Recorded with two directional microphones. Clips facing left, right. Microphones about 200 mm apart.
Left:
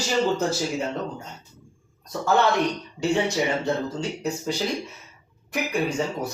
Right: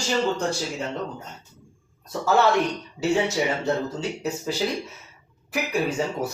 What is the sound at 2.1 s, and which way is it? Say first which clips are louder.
Speech: right 1 dB; 5° right (ahead or behind).